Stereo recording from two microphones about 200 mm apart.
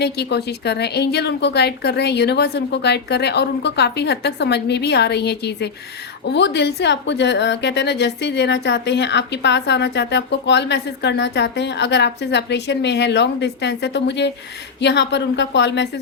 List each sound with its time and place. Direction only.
0.0 s a woman's voice: 55° left (ahead or behind)